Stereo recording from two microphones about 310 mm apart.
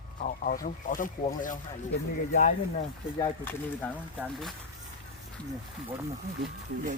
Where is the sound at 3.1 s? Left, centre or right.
Centre.